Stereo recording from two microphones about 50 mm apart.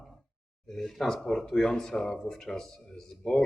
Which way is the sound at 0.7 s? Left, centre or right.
Centre.